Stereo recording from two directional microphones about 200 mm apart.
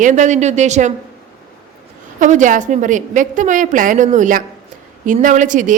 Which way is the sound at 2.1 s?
40° right (ahead or behind).